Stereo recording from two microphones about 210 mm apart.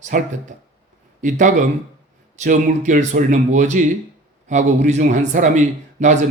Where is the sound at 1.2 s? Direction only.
35° right (ahead or behind).